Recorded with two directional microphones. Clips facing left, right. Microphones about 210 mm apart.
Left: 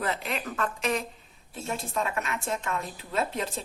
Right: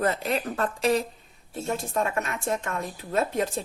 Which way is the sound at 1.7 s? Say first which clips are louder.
Right 4 dB; 50° right (ahead or behind).